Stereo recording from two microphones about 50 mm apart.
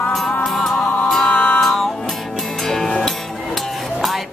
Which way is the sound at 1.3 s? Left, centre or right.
Left.